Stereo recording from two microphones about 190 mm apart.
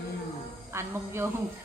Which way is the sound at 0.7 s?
15° right (ahead or behind).